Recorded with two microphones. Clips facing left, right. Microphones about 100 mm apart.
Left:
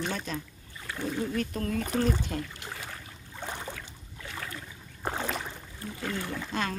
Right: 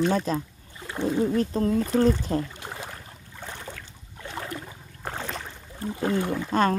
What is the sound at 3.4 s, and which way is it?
Boat, 15° left (ahead or behind).